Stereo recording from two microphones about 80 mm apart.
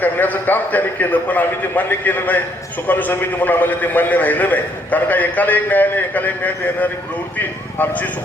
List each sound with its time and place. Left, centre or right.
0.0 s a man's voice: left